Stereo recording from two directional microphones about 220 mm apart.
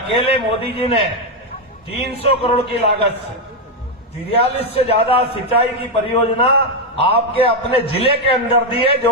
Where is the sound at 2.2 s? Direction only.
25° left (ahead or behind).